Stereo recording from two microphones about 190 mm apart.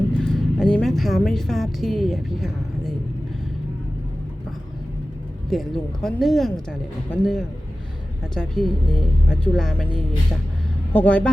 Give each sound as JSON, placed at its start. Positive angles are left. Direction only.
{"t": 0.2, "sound": "a woman's voice", "side_deg": 5}
{"t": 5.5, "sound": "speech", "side_deg": 0}
{"t": 10.9, "sound": "speech", "side_deg": 5}